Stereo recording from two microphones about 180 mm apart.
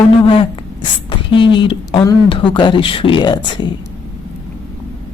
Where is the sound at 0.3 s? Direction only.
30° left (ahead or behind).